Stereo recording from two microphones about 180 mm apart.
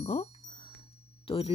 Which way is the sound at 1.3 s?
30° left (ahead or behind).